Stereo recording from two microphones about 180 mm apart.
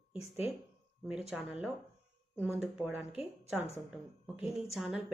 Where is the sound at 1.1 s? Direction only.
5° right (ahead or behind).